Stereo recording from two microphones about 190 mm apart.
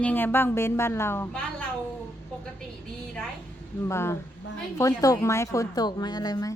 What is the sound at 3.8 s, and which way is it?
Speech, 15° left (ahead or behind).